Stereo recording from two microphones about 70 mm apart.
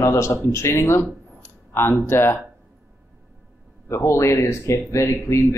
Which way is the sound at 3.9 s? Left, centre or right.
Left.